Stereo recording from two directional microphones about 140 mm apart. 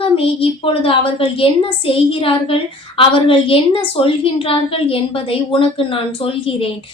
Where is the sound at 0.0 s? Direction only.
40° left (ahead or behind).